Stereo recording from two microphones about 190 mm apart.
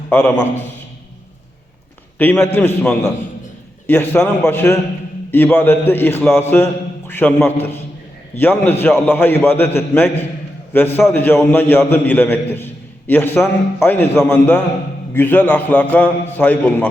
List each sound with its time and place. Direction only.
0.1 s a man's voice: 5° left (ahead or behind)
2.1 s a man's voice: 10° left (ahead or behind)